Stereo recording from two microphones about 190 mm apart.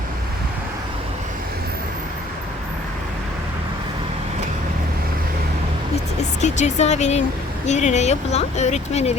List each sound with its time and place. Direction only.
6.4 s speech: 35° left (ahead or behind)